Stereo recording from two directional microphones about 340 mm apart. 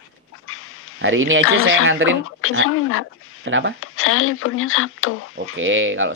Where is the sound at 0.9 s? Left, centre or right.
Right.